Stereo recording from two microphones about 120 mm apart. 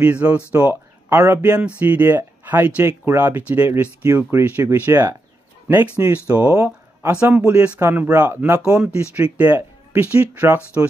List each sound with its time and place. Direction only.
0.0 s speech: 10° right (ahead or behind)
6.5 s a sound: 25° right (ahead or behind)
7.4 s speech: 15° right (ahead or behind)